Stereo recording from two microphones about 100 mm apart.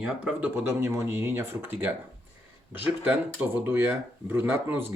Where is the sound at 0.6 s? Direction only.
30° right (ahead or behind).